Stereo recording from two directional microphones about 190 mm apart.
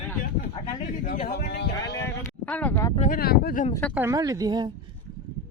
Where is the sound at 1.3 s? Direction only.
60° left (ahead or behind).